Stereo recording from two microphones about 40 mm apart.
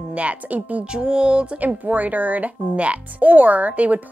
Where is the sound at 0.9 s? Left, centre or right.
Right.